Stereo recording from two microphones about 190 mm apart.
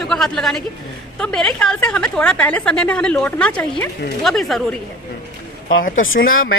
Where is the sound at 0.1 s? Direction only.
Centre (ahead or behind).